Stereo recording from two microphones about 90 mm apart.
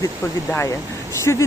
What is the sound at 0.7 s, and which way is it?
Speech, 35° left (ahead or behind).